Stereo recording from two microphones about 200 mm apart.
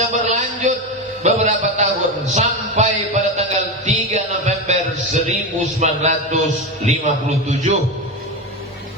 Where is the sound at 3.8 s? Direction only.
35° right (ahead or behind).